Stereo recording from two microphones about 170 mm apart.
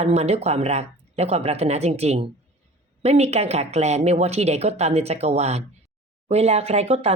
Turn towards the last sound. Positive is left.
turn(degrees=-40)  # may be behind; listen again after turning